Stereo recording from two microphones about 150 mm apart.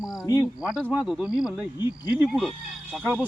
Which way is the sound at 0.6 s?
5° right (ahead or behind).